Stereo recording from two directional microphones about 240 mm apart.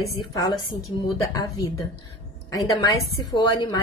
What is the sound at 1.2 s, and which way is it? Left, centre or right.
Speech, centre.